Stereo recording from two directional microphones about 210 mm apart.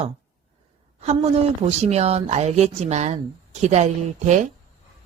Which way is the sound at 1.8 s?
30° right (ahead or behind).